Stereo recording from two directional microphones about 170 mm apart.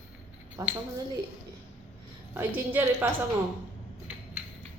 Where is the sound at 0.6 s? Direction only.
20° right (ahead or behind).